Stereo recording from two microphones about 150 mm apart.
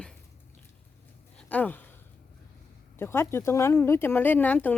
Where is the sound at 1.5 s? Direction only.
10° left (ahead or behind).